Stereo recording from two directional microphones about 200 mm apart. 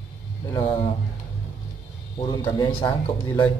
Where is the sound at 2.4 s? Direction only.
25° left (ahead or behind).